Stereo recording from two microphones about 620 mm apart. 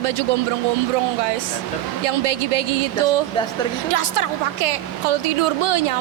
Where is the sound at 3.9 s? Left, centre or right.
Right.